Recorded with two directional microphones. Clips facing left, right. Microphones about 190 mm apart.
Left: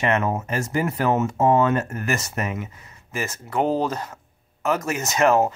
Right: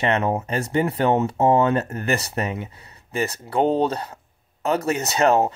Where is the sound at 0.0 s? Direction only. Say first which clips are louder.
Right 1 dB; 30° right (ahead or behind).